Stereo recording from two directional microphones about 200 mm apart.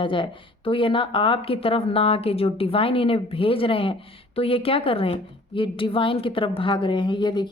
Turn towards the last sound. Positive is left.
turn(degrees=20)  # may be behind; listen again after turning